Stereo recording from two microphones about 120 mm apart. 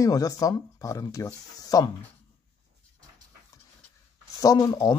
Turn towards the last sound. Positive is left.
turn(degrees=35)  # may be behind; listen again after turning